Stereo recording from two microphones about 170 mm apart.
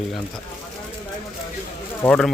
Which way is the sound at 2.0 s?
5° left (ahead or behind).